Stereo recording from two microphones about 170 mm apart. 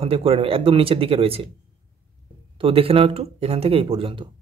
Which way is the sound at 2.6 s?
35° right (ahead or behind).